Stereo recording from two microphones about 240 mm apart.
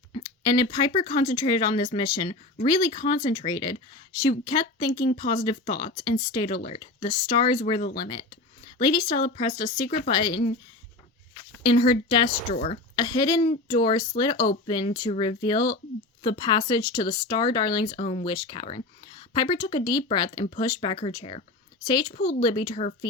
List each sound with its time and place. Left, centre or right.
0.1 s speech: centre
5.0 s speech: left
5.3 s speech: centre
11.6 s speech: centre